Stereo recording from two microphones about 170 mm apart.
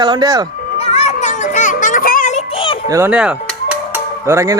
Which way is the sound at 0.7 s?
40° left (ahead or behind).